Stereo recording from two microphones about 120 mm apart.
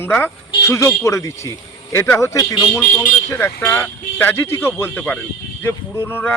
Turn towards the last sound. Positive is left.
turn(degrees=20)  # may be behind; listen again after turning